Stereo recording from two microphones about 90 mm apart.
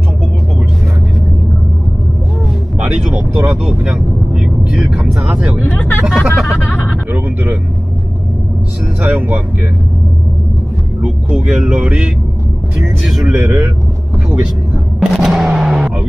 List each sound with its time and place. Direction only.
3.8 s vehicle: 10° right (ahead or behind)
5.0 s speech: 15° right (ahead or behind)
5.8 s speech: 20° left (ahead or behind)
6.0 s vehicle: 5° right (ahead or behind)
7.1 s speech: 20° right (ahead or behind)
9.0 s speech: 20° right (ahead or behind)
11.0 s speech: 10° right (ahead or behind)
13.3 s speech: 30° right (ahead or behind)
15.0 s a sound: 5° right (ahead or behind)